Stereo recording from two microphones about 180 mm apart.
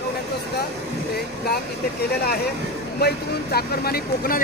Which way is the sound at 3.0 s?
60° left (ahead or behind).